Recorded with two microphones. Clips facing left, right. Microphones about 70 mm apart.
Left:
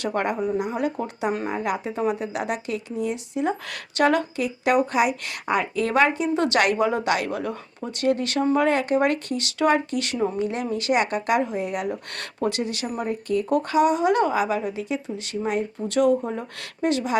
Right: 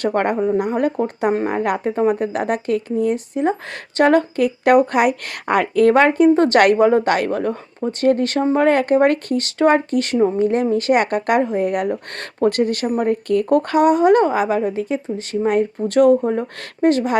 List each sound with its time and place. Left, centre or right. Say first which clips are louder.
0.0 s speech: right 6 dB; right
1.5 s speech: right 6 dB; right